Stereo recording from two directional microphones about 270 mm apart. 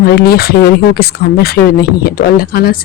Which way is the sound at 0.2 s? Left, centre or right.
Left.